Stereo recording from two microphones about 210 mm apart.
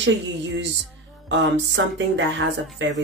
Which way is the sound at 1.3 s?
60° right (ahead or behind).